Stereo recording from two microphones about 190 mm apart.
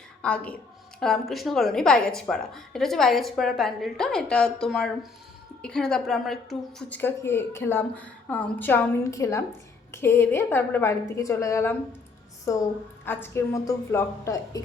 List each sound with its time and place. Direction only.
0.2 s a woman's voice: 5° left (ahead or behind)